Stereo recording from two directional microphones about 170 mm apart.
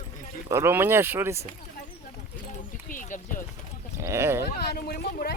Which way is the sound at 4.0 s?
15° right (ahead or behind).